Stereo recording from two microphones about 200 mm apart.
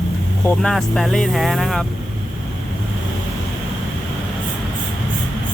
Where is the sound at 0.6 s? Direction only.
Centre (ahead or behind).